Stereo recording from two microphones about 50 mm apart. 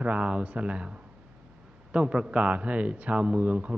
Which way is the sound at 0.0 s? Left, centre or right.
Right.